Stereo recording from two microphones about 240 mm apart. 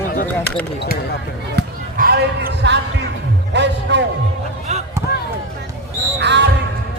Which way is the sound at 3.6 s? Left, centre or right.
Right.